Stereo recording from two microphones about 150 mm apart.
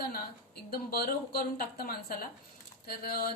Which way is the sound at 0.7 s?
90° left.